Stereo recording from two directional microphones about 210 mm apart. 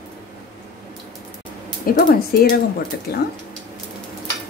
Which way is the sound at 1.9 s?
45° left (ahead or behind).